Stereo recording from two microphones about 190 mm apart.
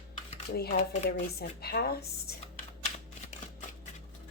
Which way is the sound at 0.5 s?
55° left (ahead or behind).